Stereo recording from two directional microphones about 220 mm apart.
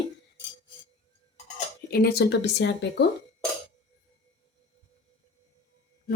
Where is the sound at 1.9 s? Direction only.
45° left (ahead or behind).